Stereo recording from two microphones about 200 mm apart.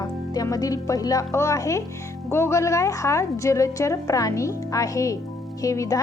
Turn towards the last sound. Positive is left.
turn(degrees=15)  # may be behind; listen again after turning